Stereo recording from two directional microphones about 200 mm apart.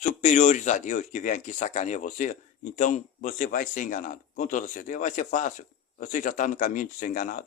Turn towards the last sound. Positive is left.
turn(degrees=40)  # may be behind; listen again after turning